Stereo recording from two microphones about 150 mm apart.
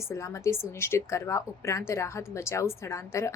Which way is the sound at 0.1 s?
20° left (ahead or behind).